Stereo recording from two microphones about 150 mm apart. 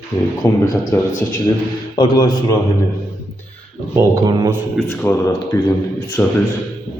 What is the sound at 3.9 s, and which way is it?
Speech, 25° right (ahead or behind).